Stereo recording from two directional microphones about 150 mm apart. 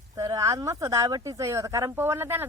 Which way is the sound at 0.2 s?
25° right (ahead or behind).